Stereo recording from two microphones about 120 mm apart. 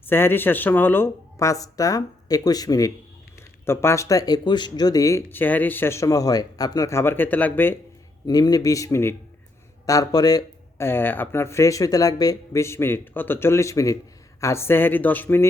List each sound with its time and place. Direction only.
0.1 s speech: 20° left (ahead or behind)
8.3 s speech: 30° left (ahead or behind)
10.8 s speech: 15° left (ahead or behind)